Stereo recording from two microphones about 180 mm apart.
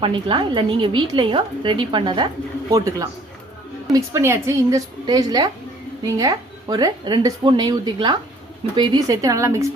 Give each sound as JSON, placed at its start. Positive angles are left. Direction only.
{"t": 0.0, "sound": "a woman's voice", "side_deg": -25}